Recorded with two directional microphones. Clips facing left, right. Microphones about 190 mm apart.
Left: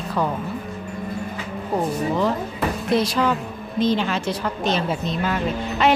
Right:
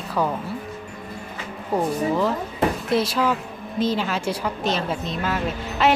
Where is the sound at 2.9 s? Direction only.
5° right (ahead or behind).